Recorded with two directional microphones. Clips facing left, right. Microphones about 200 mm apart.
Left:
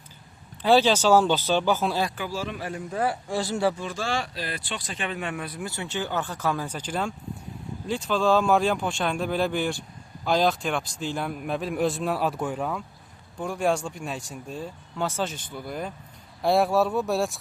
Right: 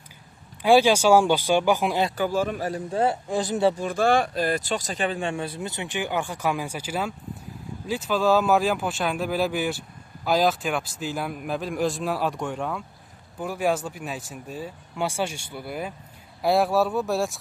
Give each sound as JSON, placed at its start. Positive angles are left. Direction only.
{"t": 0.6, "sound": "speech", "side_deg": -10}
{"t": 2.1, "sound": "speech", "side_deg": -50}
{"t": 3.8, "sound": "a man's voice", "side_deg": -55}